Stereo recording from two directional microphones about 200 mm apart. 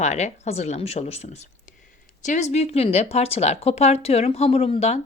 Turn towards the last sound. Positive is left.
turn(degrees=30)  # may be behind; listen again after turning